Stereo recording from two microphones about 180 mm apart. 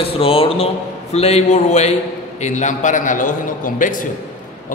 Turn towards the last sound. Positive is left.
turn(degrees=45)  # may be behind; listen again after turning